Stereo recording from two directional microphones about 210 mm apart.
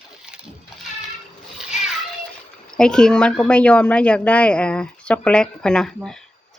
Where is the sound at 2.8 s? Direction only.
5° left (ahead or behind).